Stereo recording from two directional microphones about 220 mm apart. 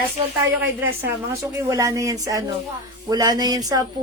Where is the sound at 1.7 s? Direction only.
15° right (ahead or behind).